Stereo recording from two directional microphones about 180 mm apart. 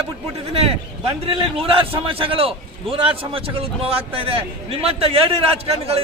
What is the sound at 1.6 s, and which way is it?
A man's voice, 30° right (ahead or behind).